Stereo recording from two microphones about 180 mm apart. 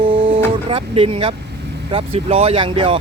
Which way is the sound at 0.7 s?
30° right (ahead or behind).